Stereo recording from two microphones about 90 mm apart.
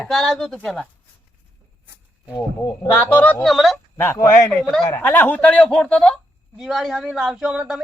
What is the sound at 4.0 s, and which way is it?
Speech, 30° left (ahead or behind).